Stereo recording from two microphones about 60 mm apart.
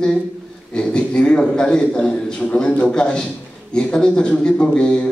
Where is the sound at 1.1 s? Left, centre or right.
Centre.